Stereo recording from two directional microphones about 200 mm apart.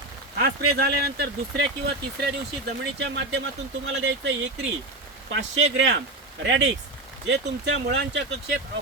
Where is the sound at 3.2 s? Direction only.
65° right (ahead or behind).